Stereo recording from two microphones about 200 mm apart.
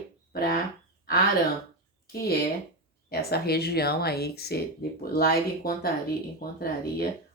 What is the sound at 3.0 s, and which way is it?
Speech, 50° left (ahead or behind).